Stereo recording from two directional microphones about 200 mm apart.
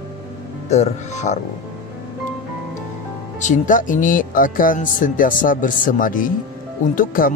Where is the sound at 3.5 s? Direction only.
40° left (ahead or behind).